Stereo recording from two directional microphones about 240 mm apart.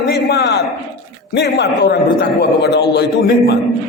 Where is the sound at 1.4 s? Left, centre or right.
Left.